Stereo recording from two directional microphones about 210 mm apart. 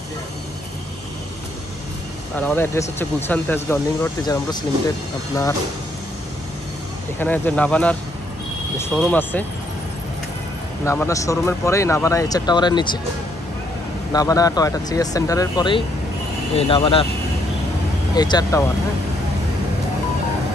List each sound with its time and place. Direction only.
2.3 s speech: 10° left (ahead or behind)
7.2 s speech: 10° left (ahead or behind)
10.9 s speech: 15° left (ahead or behind)
14.1 s speech: 15° left (ahead or behind)
18.1 s speech: 20° left (ahead or behind)